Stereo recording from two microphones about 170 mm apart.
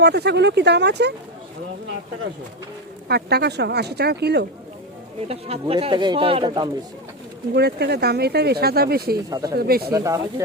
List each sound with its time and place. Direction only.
0.0 s speech: 80° right
3.1 s speech: 70° right (ahead or behind)
5.3 s speech: 35° right (ahead or behind)
7.5 s speech: 75° right (ahead or behind)
9.3 s speech: 20° right (ahead or behind)
9.6 s speech: 65° right (ahead or behind)
9.9 s speech: 20° right (ahead or behind)